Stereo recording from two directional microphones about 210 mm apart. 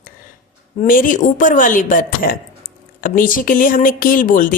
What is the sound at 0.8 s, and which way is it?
Speech, 40° left (ahead or behind).